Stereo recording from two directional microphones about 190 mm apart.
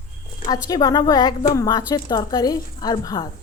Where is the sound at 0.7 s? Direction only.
20° left (ahead or behind).